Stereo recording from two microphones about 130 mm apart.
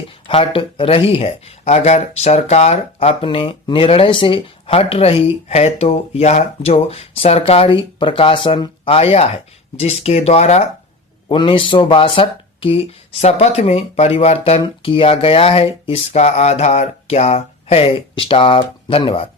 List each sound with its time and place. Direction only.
0.3 s speech: 45° left (ahead or behind)
11.3 s speech: 45° left (ahead or behind)